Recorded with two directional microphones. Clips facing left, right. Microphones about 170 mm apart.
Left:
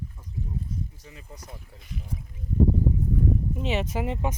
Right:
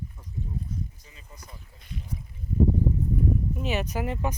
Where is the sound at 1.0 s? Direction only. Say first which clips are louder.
Left 5 dB; 70° left (ahead or behind).